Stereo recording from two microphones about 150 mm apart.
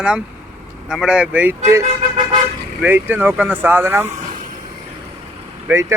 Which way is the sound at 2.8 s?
15° right (ahead or behind).